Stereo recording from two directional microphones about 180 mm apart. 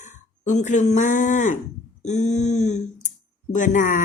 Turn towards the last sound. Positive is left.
turn(degrees=45)  # may be behind; listen again after turning